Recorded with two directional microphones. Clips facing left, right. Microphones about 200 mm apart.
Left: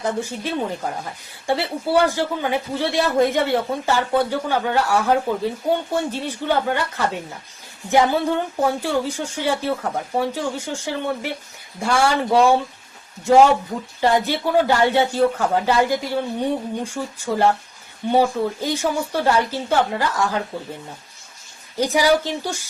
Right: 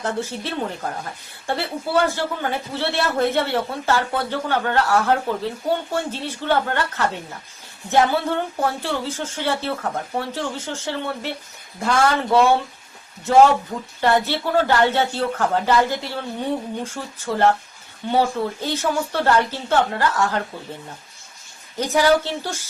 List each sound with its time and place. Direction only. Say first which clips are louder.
0.0 s a man's voice: left 1 dB; 15° left (ahead or behind)
14.0 s a man's voice: left 1 dB; 15° left (ahead or behind)
21.8 s a man's voice: even; 10° left (ahead or behind)